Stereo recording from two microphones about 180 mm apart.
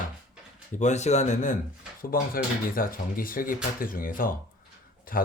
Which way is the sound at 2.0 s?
55° left (ahead or behind).